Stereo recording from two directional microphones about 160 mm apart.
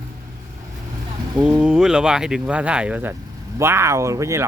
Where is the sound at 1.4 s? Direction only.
5° right (ahead or behind).